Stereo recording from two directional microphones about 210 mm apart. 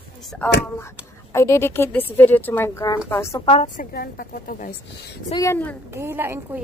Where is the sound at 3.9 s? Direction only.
45° left (ahead or behind).